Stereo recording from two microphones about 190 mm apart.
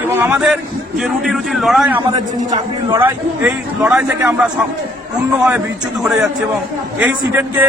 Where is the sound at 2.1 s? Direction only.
20° right (ahead or behind).